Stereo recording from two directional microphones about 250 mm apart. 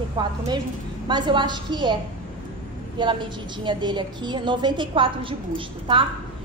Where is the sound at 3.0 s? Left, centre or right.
Centre.